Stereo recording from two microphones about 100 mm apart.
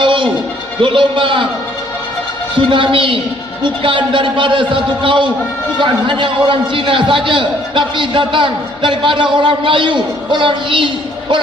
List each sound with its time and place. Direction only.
0.0 s music: 55° right (ahead or behind)
0.8 s a man's voice: 55° right (ahead or behind)
2.6 s a man's voice: 55° right (ahead or behind)